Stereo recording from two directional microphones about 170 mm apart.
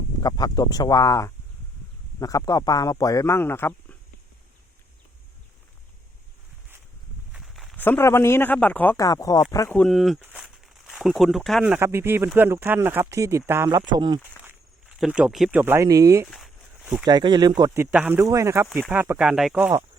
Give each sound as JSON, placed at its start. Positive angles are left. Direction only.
{"t": 0.2, "sound": "speech", "side_deg": 25}
{"t": 7.3, "sound": "walk", "side_deg": 0}
{"t": 7.8, "sound": "speech", "side_deg": 10}
{"t": 9.7, "sound": "speech", "side_deg": 0}
{"t": 10.2, "sound": "a sound", "side_deg": -10}
{"t": 10.8, "sound": "speech", "side_deg": 0}
{"t": 14.4, "sound": "speech", "side_deg": -5}
{"t": 16.2, "sound": "a sound", "side_deg": 0}
{"t": 17.1, "sound": "speech", "side_deg": -25}
{"t": 17.7, "sound": "speech", "side_deg": -10}